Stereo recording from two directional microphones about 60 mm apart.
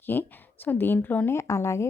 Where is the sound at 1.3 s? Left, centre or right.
Left.